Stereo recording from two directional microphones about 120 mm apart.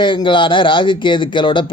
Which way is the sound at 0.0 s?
40° left (ahead or behind).